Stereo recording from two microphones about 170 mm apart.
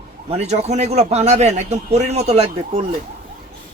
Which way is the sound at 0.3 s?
40° right (ahead or behind).